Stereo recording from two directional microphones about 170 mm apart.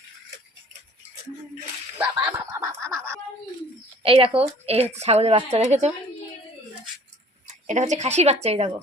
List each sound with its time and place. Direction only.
2.0 s a sound: 10° right (ahead or behind)
4.0 s a woman's voice: 30° right (ahead or behind)
7.4 s speech: 45° right (ahead or behind)